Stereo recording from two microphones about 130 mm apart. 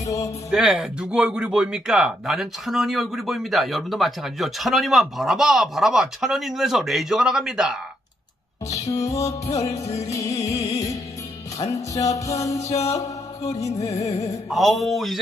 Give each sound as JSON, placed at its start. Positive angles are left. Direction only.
{"t": 0.0, "sound": "speech", "side_deg": 25}
{"t": 0.5, "sound": "a man's voice", "side_deg": 0}
{"t": 8.6, "sound": "music", "side_deg": 25}
{"t": 9.6, "sound": "music", "side_deg": 55}
{"t": 10.1, "sound": "music", "side_deg": 25}
{"t": 13.0, "sound": "music", "side_deg": 55}
{"t": 14.5, "sound": "a man's voice", "side_deg": 0}